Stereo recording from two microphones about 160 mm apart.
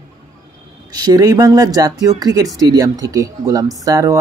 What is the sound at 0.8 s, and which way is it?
Speech, 25° right (ahead or behind).